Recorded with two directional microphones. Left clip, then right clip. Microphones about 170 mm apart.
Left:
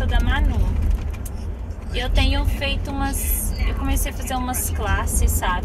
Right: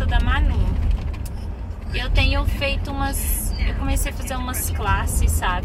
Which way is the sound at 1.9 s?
10° right (ahead or behind).